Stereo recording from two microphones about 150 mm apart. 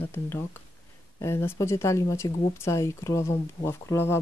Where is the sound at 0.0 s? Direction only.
15° left (ahead or behind).